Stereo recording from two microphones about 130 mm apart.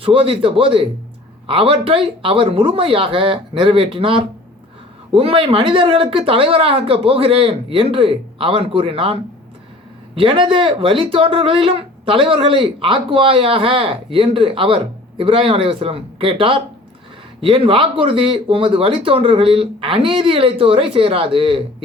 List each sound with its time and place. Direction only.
0.0 s speech: 45° right (ahead or behind)